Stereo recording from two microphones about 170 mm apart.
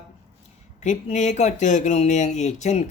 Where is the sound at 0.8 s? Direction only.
45° left (ahead or behind).